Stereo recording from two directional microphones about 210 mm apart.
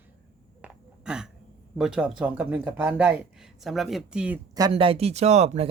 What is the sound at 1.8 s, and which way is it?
Speech, 5° right (ahead or behind).